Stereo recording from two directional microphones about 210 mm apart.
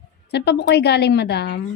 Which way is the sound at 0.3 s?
55° left (ahead or behind).